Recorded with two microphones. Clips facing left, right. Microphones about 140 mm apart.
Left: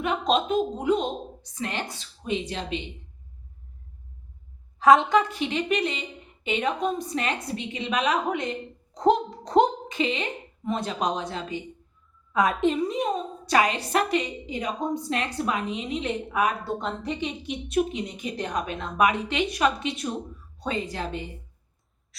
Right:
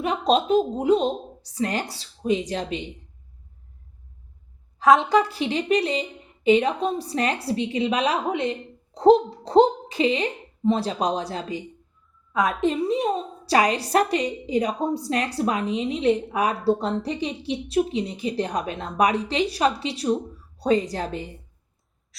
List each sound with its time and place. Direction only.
0.0 s a woman's voice: 35° right (ahead or behind)
4.8 s a woman's voice: centre (ahead or behind)
5.0 s a woman's voice: 35° right (ahead or behind)
12.3 s a woman's voice: centre (ahead or behind)
12.8 s a woman's voice: 30° right (ahead or behind)